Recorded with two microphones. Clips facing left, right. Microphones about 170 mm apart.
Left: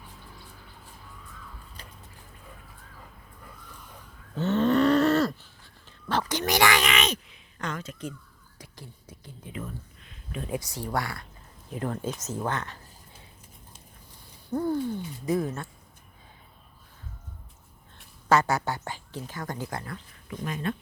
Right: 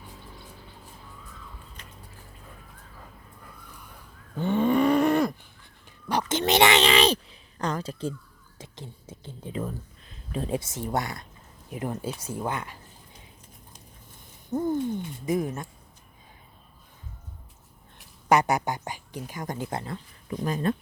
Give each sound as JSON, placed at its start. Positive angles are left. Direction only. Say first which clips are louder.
{"t": 4.4, "sound": "cattle", "louder": "even", "side_deg": -10}
{"t": 6.1, "sound": "speech", "louder": "right 3 dB", "side_deg": -20}
{"t": 11.7, "sound": "speech", "louder": "even", "side_deg": -10}
{"t": 14.5, "sound": "a sound", "louder": "right 1 dB", "side_deg": -20}
{"t": 15.3, "sound": "speech", "louder": "even", "side_deg": -15}
{"t": 18.3, "sound": "speech", "louder": "right 1 dB", "side_deg": -15}
{"t": 20.4, "sound": "speech", "louder": "right 5 dB", "side_deg": -35}